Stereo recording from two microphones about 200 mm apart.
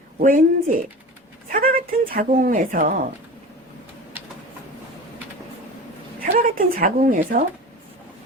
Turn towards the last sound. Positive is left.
turn(degrees=-45)  # may be behind; listen again after turning